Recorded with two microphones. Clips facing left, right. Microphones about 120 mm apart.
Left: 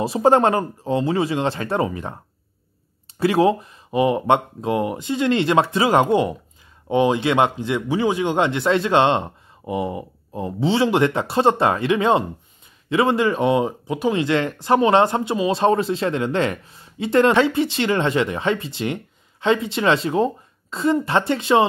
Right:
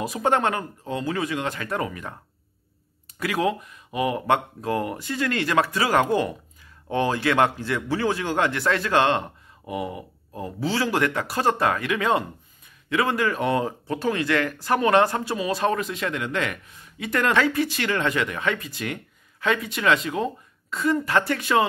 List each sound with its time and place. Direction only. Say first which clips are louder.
0.0 s speech: left 7 dB; 30° left (ahead or behind)